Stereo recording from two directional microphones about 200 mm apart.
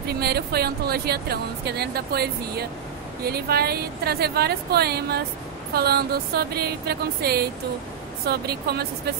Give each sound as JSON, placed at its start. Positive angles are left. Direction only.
{"t": 0.1, "sound": "speech", "side_deg": -50}